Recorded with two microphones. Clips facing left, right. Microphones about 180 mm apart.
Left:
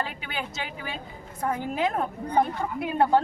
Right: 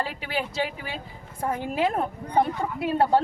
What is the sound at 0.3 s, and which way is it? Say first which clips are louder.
Speech: right 6 dB; 30° right (ahead or behind).